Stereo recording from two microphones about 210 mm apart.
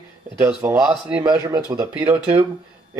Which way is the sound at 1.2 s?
20° right (ahead or behind).